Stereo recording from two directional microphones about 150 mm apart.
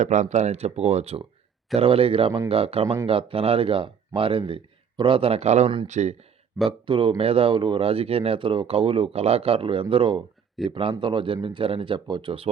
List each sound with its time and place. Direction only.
0.0 s speech: 55° right (ahead or behind)
6.7 s speech: 35° right (ahead or behind)
10.6 s speech: centre (ahead or behind)
10.9 s speech: 35° right (ahead or behind)